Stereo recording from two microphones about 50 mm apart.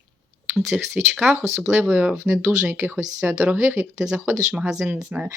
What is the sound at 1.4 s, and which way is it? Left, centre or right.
Speech, right.